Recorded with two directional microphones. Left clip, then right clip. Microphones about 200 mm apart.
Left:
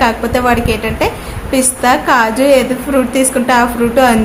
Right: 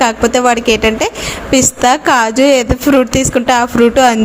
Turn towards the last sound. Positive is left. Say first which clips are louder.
# right 2 dB
turn(degrees=-40)  # may be behind; listen again after turning